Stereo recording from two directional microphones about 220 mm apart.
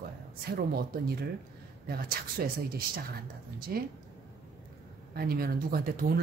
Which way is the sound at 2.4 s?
40° right (ahead or behind).